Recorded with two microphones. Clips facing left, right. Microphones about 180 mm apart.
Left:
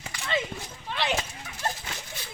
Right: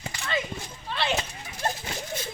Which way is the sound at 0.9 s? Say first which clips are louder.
Right 1 dB; 15° left (ahead or behind).